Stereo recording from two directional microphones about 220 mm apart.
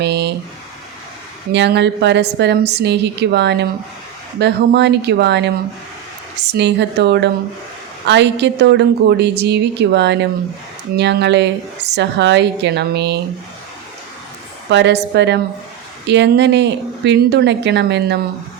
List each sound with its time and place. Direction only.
0.0 s a sound: 50° right (ahead or behind)
1.5 s a woman's voice: 50° right (ahead or behind)
14.7 s a woman's voice: 50° right (ahead or behind)